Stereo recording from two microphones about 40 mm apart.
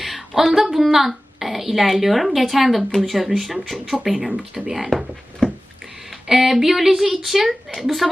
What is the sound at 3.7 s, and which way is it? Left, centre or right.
Speech, centre.